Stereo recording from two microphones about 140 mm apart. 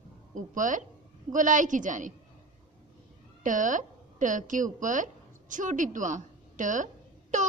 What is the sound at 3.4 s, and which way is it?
A woman's voice, 65° right (ahead or behind).